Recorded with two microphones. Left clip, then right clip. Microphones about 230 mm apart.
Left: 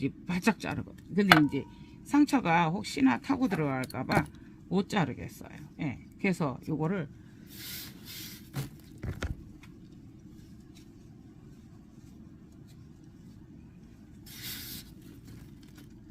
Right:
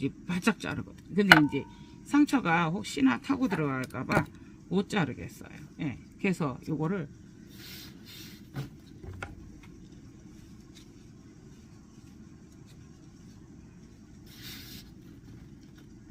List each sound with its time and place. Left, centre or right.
0.0 s speech: left